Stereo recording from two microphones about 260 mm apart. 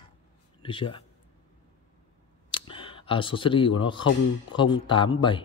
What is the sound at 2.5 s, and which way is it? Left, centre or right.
A man's voice, centre.